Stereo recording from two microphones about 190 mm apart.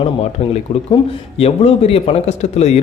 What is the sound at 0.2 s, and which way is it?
A man's voice, 35° left (ahead or behind).